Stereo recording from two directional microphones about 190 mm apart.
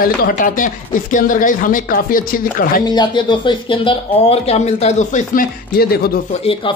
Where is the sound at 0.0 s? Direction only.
50° left (ahead or behind).